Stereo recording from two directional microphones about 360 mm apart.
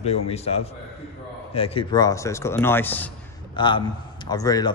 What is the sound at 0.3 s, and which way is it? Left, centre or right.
A man's voice, centre.